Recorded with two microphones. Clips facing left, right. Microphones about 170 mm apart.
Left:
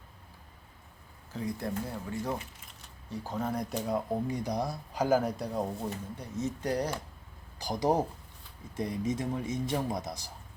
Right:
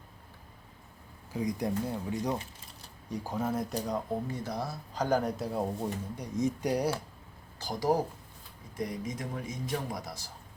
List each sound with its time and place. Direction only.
1.3 s speech: 15° right (ahead or behind)
3.8 s speech: 10° left (ahead or behind)
6.1 s speech: 15° right (ahead or behind)
7.6 s a man's voice: 20° left (ahead or behind)